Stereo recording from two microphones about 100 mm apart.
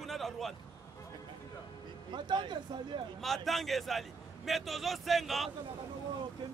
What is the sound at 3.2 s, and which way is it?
A man's voice, centre (ahead or behind).